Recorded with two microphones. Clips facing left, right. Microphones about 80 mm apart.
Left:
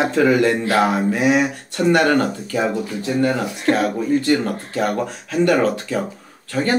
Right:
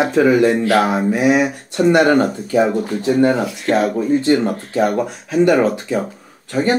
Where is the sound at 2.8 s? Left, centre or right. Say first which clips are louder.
Right 5 dB; right.